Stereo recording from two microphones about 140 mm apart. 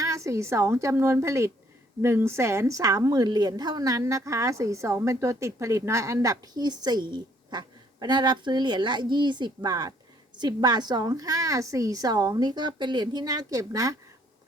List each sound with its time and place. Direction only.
0.0 s a woman's voice: 20° right (ahead or behind)